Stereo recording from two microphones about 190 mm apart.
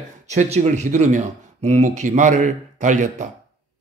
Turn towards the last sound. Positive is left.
turn(degrees=-40)  # may be behind; listen again after turning